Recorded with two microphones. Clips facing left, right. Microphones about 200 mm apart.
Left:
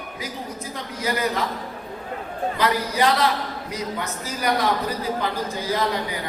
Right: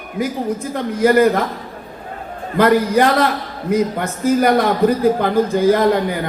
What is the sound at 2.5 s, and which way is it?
A man's voice, 55° right (ahead or behind).